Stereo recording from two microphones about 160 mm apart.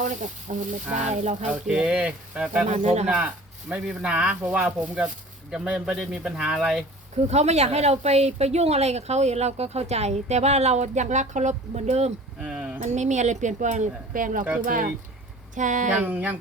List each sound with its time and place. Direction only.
0.0 s speech: 50° right (ahead or behind)
1.5 s speech: 5° right (ahead or behind)
2.6 s speech: 45° right (ahead or behind)
3.7 s speech: 5° right (ahead or behind)
7.3 s speech: 40° right (ahead or behind)
12.4 s speech: 5° right (ahead or behind)
12.8 s speech: 50° right (ahead or behind)
15.9 s speech: 10° right (ahead or behind)